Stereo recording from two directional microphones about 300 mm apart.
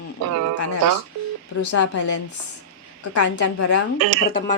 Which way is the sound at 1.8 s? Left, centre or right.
Left.